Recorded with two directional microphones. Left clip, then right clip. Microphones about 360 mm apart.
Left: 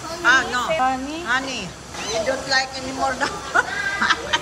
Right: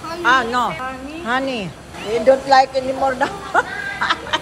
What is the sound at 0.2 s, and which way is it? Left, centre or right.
Speech, centre.